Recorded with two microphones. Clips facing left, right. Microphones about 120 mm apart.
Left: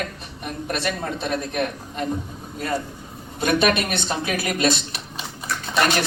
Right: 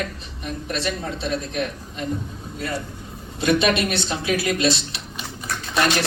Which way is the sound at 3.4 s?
50° left (ahead or behind).